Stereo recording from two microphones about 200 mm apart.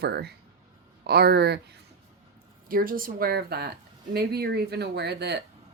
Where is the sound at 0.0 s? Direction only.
55° right (ahead or behind).